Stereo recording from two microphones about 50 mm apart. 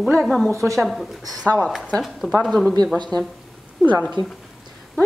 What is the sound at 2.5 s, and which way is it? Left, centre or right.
Speech, centre.